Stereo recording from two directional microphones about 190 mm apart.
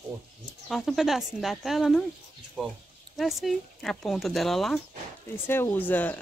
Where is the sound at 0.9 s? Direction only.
Centre (ahead or behind).